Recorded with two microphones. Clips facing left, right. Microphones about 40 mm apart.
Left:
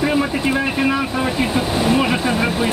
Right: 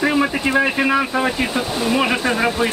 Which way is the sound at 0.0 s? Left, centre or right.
Centre.